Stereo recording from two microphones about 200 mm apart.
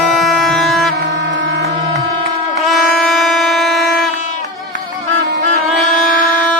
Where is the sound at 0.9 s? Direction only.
65° right (ahead or behind).